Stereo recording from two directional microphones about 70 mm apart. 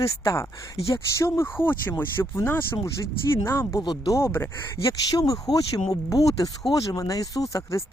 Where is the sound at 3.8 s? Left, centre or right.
Left.